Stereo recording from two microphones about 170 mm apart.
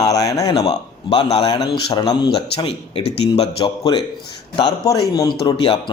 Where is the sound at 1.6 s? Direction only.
20° left (ahead or behind).